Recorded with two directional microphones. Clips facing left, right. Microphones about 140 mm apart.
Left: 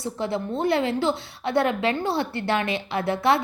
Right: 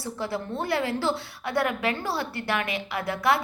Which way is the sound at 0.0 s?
25° left (ahead or behind).